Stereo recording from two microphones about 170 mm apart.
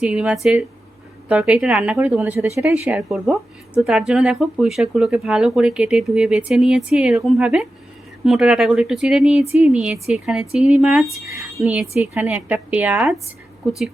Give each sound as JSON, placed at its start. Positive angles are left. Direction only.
{"t": 0.0, "sound": "a woman's voice", "side_deg": -5}